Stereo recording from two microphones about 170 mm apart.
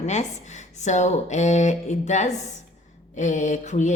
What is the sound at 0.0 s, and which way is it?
Speech, 45° left (ahead or behind).